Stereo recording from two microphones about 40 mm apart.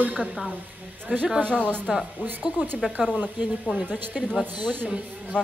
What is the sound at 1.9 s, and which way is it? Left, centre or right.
Speech, right.